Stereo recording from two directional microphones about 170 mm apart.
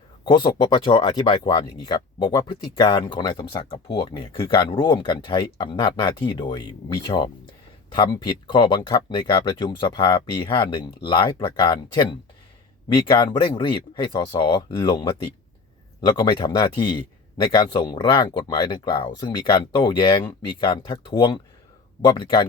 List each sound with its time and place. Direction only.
0.3 s speech: 25° left (ahead or behind)